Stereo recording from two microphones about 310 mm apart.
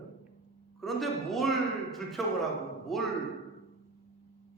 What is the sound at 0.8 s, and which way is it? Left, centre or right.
A man's voice, centre.